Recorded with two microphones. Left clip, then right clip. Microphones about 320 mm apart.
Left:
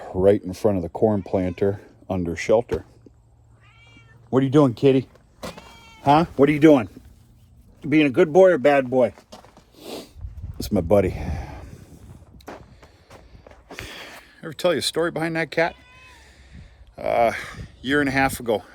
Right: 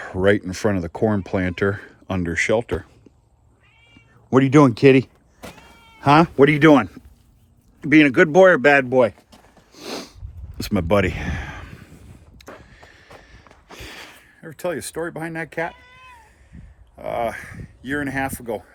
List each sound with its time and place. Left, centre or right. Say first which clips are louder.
0.0 s speech: even; right
4.4 s speech: right 4 dB; right
4.7 s speech: right 4 dB; right
6.1 s speech: right 3 dB; right
10.6 s a sound: even; right
14.3 s speech: left 5 dB; centre